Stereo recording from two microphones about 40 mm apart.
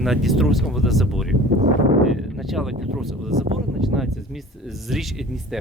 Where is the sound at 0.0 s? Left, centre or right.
Centre.